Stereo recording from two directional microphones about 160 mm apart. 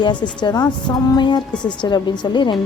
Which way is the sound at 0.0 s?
30° left (ahead or behind).